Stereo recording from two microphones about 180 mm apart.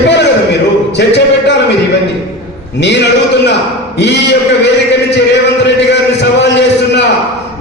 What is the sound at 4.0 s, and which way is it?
Speech, 75° left (ahead or behind).